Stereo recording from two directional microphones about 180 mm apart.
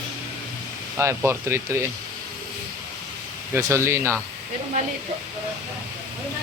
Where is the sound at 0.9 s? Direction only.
15° right (ahead or behind).